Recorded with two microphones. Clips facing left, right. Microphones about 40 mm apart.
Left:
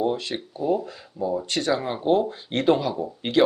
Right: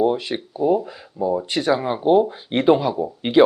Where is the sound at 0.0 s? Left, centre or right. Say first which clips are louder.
Right 5 dB; centre.